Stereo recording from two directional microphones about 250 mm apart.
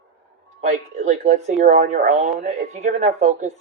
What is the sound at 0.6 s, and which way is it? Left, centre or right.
Speech, right.